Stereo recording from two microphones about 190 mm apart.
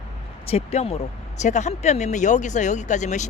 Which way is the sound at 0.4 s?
30° left (ahead or behind).